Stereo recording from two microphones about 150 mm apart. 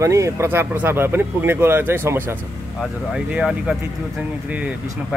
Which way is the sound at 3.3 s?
5° right (ahead or behind).